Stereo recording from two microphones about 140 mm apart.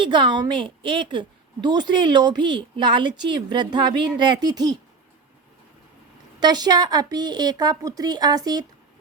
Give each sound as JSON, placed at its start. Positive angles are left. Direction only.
{"t": 0.0, "sound": "a woman's voice", "side_deg": -35}
{"t": 6.4, "sound": "a woman's voice", "side_deg": -30}